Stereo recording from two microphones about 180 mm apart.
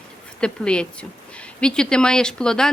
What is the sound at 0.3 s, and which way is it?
Speech, 5° left (ahead or behind).